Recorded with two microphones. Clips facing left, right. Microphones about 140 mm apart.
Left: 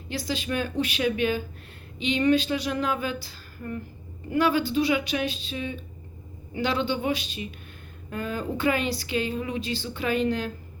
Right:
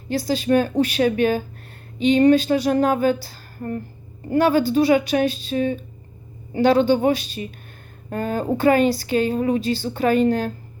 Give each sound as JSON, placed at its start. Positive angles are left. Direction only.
{"t": 0.1, "sound": "speech", "side_deg": -40}